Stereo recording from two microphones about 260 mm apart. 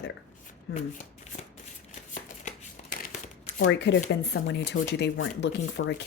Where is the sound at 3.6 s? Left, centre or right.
Left.